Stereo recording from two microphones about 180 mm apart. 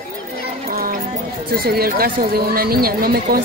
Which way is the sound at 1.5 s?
55° right (ahead or behind).